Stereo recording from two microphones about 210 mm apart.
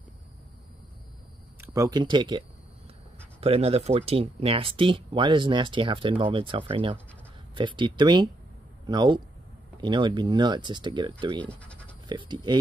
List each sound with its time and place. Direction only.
1.6 s speech: 15° right (ahead or behind)